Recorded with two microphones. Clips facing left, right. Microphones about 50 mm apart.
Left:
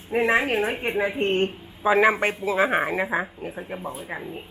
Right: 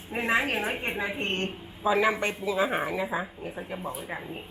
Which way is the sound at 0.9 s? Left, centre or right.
Left.